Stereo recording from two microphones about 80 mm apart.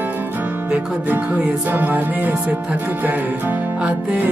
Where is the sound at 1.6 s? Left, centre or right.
Right.